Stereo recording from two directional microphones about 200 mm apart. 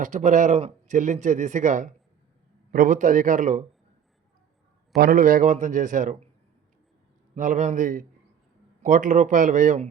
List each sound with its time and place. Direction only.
0.0 s speech: 40° right (ahead or behind)
4.9 s speech: 45° right (ahead or behind)
7.3 s speech: 40° right (ahead or behind)